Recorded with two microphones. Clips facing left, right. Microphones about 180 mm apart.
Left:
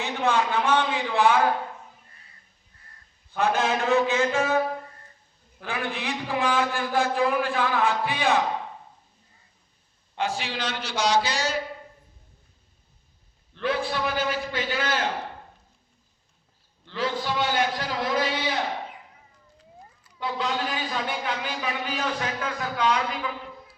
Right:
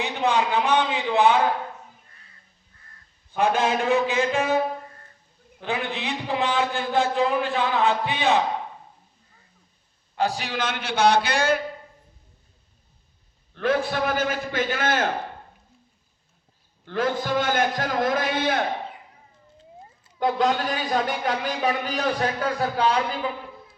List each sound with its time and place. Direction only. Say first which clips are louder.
0.0 s a man's voice: right 1 dB; 15° right (ahead or behind)
3.8 s a man's voice: even; 15° right (ahead or behind)
10.2 s a man's voice: right 3 dB; 40° right (ahead or behind); by 11.6 s 55° right (ahead or behind)
13.6 s a man's voice: right 4 dB; 50° right (ahead or behind)
16.8 s a man's voice: right 3 dB; 50° right (ahead or behind)
20.1 s a man's voice: right 6 dB; 50° right (ahead or behind); by 23.7 s 30° right (ahead or behind)